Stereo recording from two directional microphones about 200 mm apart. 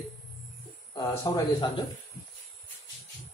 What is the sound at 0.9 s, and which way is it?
Speech, 20° left (ahead or behind).